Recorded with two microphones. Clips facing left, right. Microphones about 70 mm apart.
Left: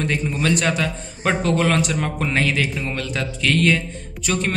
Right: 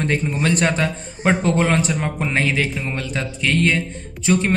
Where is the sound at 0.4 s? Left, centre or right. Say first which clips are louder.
Right 1 dB; right.